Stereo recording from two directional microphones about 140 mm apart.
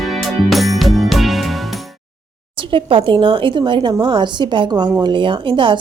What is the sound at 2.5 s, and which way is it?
A woman's voice, 40° right (ahead or behind).